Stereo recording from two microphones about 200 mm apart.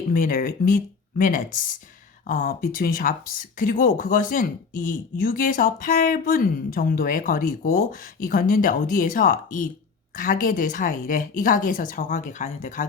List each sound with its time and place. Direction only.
0.1 s speech: 45° left (ahead or behind)